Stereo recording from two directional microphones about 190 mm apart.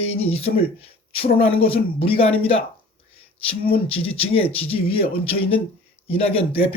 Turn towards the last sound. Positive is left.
turn(degrees=30)  # may be behind; listen again after turning